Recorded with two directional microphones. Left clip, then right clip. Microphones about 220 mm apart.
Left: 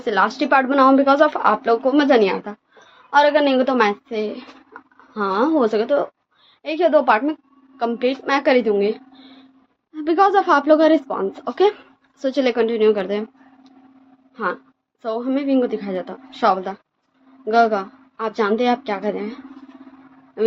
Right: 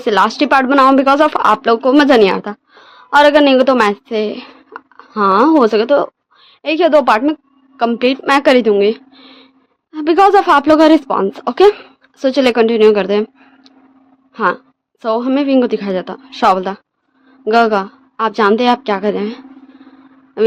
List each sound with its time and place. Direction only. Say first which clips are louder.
0.0 s a woman's voice: right 6 dB; 50° right (ahead or behind)
14.3 s speech: right 9 dB; 50° right (ahead or behind)